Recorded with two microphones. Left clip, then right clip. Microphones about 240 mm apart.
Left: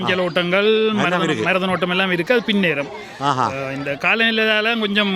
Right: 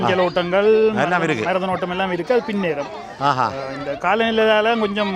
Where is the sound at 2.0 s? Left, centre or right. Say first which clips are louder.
Even; left.